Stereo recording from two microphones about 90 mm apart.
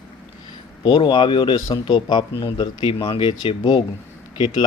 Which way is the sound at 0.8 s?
60° left (ahead or behind).